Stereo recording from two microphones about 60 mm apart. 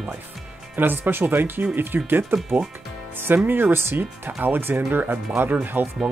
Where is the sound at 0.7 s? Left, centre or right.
Right.